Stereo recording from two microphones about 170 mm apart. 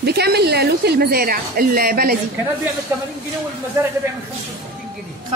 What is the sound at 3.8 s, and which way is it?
Speech, 10° right (ahead or behind).